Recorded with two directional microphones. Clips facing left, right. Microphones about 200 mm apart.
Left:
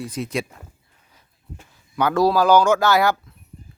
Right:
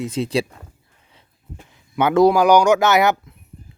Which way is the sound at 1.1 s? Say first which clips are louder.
Right 1 dB; 20° right (ahead or behind).